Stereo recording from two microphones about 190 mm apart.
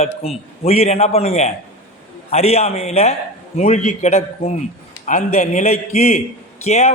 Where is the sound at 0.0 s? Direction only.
30° left (ahead or behind).